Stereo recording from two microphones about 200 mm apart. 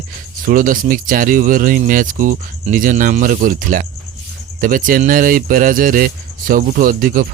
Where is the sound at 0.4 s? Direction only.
45° right (ahead or behind).